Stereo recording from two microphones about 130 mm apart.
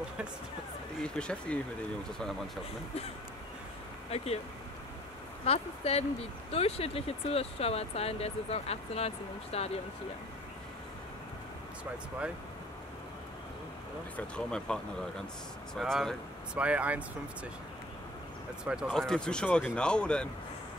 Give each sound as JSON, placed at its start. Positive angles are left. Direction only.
{"t": 1.0, "sound": "speech", "side_deg": 5}
{"t": 4.1, "sound": "speech", "side_deg": 50}
{"t": 5.4, "sound": "speech", "side_deg": 50}
{"t": 14.1, "sound": "speech", "side_deg": 5}
{"t": 18.6, "sound": "speech", "side_deg": -5}
{"t": 18.9, "sound": "speech", "side_deg": 5}